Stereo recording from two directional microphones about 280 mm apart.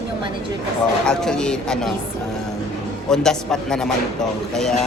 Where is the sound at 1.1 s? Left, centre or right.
Centre.